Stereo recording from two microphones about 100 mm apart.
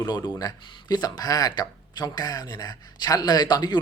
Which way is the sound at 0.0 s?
40° left (ahead or behind).